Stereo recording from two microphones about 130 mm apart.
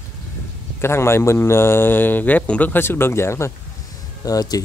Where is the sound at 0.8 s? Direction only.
20° left (ahead or behind).